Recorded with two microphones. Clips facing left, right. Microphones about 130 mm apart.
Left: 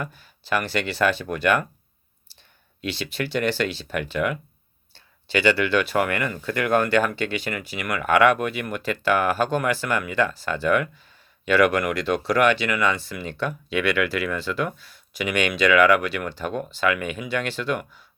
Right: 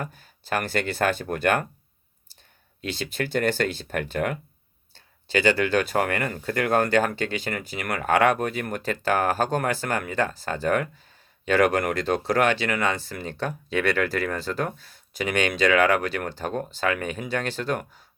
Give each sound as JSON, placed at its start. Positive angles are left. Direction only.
{"t": 0.0, "sound": "speech", "side_deg": -45}
{"t": 2.8, "sound": "speech", "side_deg": -45}